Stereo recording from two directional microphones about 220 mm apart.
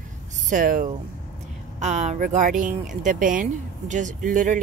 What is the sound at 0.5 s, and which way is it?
Speech, 35° right (ahead or behind).